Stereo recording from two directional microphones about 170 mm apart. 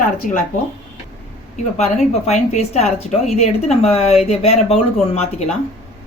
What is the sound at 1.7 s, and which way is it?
Speech, 40° left (ahead or behind).